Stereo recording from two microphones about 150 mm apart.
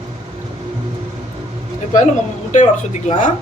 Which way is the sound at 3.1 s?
55° left (ahead or behind).